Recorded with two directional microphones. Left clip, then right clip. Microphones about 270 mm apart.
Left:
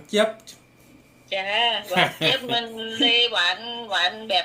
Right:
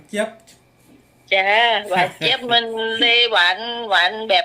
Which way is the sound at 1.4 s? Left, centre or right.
Right.